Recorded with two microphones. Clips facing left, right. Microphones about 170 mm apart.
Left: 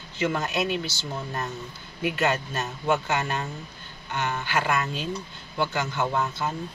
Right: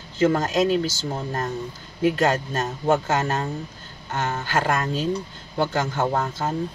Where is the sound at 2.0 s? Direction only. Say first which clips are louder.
Right 5 dB; 45° right (ahead or behind).